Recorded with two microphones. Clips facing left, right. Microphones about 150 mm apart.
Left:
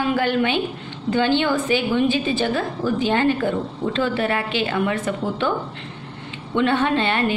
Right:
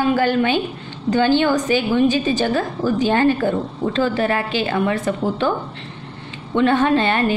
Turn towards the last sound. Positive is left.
turn(degrees=-40)  # may be behind; listen again after turning